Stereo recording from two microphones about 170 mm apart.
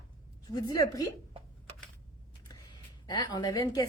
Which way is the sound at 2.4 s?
25° left (ahead or behind).